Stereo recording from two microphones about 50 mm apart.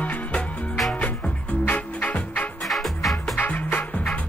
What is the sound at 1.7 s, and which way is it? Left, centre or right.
Music, left.